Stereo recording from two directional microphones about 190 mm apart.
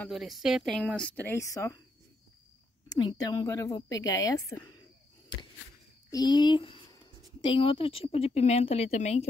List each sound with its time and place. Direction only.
0.0 s speech: centre (ahead or behind); by 1.8 s 15° left (ahead or behind)
2.9 s speech: 20° left (ahead or behind)
6.0 s speech: 20° left (ahead or behind); by 9.2 s 35° left (ahead or behind)